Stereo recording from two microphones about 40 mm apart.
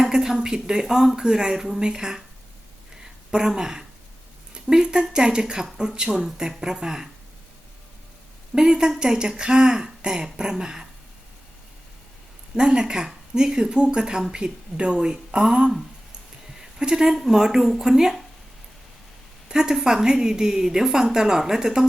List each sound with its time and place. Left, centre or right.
0.0 s speech: centre
3.3 s a woman's voice: centre
8.5 s a woman's voice: centre
12.5 s speech: right
16.6 s a sound: centre
17.2 s a woman's voice: centre
19.5 s a woman's voice: centre